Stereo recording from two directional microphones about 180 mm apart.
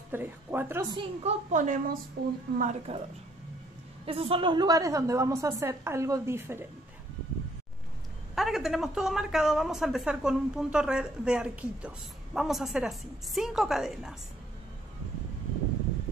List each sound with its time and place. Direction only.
0.1 s a woman's voice: 10° right (ahead or behind)
0.9 s a woman's voice: 40° right (ahead or behind)
2.2 s speech: 60° right (ahead or behind)
2.5 s a woman's voice: 45° right (ahead or behind)
4.0 s a woman's voice: 30° right (ahead or behind); by 6.6 s 15° right (ahead or behind)
8.4 s a woman's voice: centre (ahead or behind)